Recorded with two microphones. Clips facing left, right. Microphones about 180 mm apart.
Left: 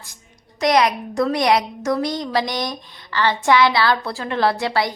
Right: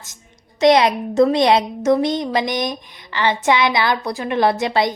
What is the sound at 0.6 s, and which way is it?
A woman's voice, 25° right (ahead or behind).